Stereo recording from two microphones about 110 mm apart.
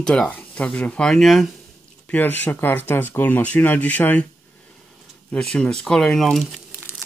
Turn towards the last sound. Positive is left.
turn(degrees=-20)  # may be behind; listen again after turning